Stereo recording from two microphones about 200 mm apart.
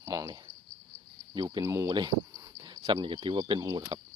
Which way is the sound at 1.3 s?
20° right (ahead or behind).